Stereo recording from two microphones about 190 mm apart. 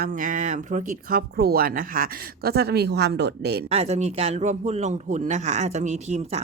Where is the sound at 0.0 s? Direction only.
45° right (ahead or behind); by 3.6 s 60° right (ahead or behind).